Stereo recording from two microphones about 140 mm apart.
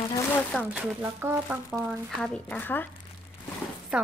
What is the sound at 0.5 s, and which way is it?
Speech, 10° left (ahead or behind).